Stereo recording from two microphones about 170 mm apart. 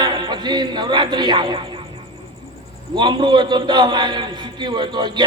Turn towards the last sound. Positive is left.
turn(degrees=-25)  # may be behind; listen again after turning